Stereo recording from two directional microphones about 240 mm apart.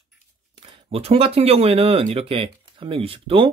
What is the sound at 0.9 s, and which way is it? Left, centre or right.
Speech, right.